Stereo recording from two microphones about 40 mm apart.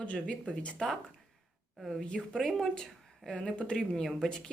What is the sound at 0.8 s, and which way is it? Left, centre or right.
Speech, centre.